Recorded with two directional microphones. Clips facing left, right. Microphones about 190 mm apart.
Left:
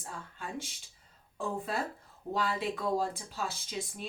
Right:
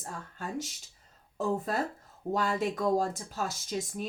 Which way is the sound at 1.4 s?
40° right (ahead or behind).